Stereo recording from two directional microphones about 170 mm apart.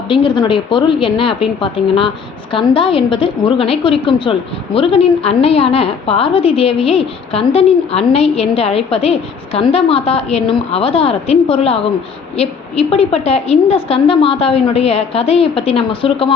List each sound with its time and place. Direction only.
0.1 s a woman's voice: 30° left (ahead or behind)